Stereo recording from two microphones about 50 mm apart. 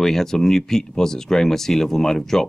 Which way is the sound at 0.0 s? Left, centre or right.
Centre.